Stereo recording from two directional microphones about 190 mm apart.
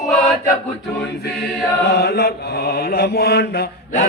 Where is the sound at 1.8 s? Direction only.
55° left (ahead or behind).